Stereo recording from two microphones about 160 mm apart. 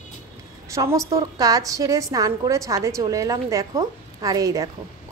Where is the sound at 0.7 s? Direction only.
20° right (ahead or behind).